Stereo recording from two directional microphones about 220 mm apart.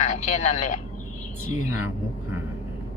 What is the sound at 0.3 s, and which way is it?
Speech, 35° left (ahead or behind).